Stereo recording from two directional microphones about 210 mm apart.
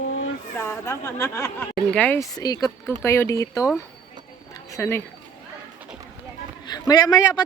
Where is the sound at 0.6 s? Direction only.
10° left (ahead or behind).